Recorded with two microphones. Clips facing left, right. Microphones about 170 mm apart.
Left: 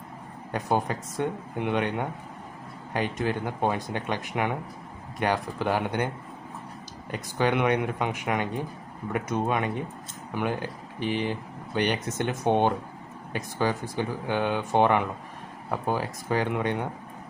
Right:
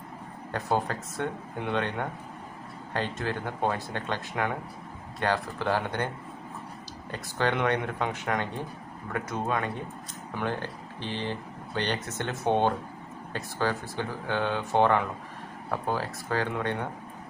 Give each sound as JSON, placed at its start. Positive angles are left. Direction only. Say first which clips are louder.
{"t": 0.5, "sound": "speech", "louder": "left 2 dB", "side_deg": 15}
{"t": 7.1, "sound": "speech", "louder": "left 3 dB", "side_deg": 15}